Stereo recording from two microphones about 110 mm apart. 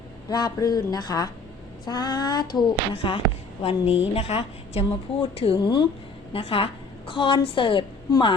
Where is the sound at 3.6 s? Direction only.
65° left (ahead or behind).